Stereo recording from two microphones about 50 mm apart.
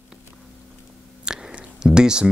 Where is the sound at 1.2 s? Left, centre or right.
Centre.